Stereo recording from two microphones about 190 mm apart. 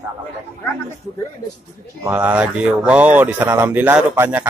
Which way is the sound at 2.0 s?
10° right (ahead or behind).